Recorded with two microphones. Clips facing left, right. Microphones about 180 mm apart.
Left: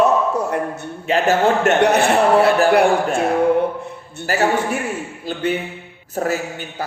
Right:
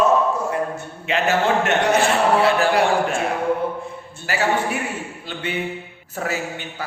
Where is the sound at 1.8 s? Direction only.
65° left (ahead or behind).